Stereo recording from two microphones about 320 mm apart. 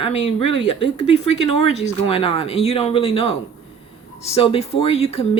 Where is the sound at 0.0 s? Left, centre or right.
Centre.